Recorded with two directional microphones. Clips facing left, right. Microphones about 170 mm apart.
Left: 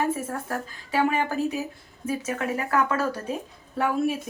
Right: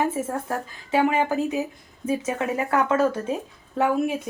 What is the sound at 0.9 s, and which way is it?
Speech, 20° right (ahead or behind).